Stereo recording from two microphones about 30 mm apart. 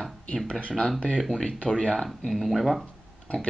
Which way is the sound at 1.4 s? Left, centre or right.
Left.